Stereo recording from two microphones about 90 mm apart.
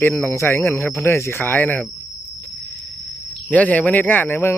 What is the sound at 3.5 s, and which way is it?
Speech, 15° left (ahead or behind).